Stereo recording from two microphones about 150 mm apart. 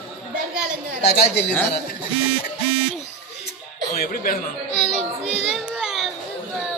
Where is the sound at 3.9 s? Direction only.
70° left (ahead or behind).